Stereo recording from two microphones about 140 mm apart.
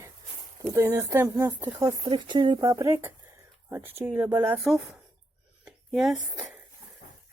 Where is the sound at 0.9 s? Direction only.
15° right (ahead or behind).